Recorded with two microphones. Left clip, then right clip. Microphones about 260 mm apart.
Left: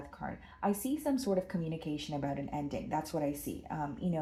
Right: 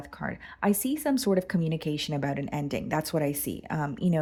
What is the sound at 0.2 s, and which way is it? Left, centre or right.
Speech, right.